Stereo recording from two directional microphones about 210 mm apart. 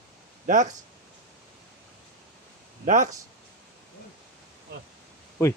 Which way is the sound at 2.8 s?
35° right (ahead or behind).